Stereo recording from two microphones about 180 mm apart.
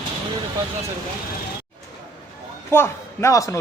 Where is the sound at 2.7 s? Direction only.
15° left (ahead or behind).